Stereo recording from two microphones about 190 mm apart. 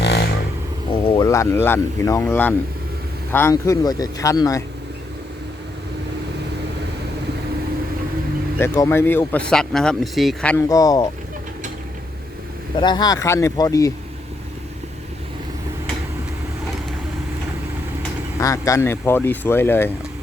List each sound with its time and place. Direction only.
0.0 s vehicle: 60° left (ahead or behind)
1.0 s speech: 20° left (ahead or behind)
8.5 s speech: 15° left (ahead or behind)
10.7 s speech: 20° left (ahead or behind)
12.8 s speech: 20° left (ahead or behind)
18.3 s speech: 15° left (ahead or behind)